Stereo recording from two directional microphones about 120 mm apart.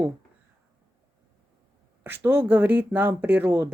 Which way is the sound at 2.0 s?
15° right (ahead or behind).